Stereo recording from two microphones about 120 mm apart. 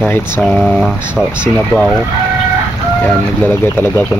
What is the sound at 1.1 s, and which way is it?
Speech, 10° right (ahead or behind).